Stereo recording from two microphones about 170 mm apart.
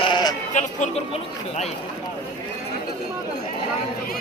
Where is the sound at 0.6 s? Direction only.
45° left (ahead or behind).